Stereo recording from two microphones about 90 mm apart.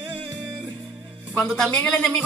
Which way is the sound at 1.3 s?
10° left (ahead or behind).